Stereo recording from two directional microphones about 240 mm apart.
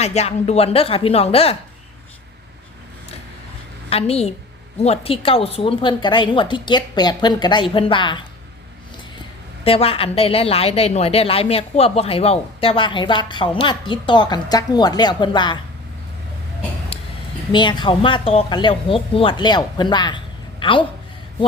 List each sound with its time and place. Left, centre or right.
0.0 s a woman's voice: left
3.8 s a woman's voice: left
9.6 s a woman's voice: left
17.5 s a woman's voice: centre